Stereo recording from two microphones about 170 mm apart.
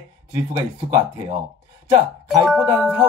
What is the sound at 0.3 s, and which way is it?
Speech, 20° right (ahead or behind).